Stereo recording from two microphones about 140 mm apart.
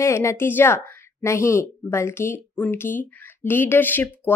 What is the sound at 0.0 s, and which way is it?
A woman's voice, 20° left (ahead or behind).